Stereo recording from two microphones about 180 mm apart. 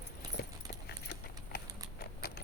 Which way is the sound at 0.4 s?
60° left (ahead or behind).